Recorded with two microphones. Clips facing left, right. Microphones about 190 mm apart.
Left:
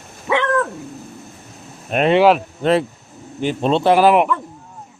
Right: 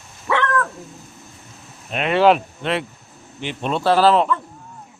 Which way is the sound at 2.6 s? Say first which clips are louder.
Left 7 dB; 40° left (ahead or behind).